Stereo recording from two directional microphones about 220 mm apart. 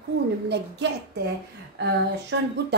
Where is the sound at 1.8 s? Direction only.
55° right (ahead or behind).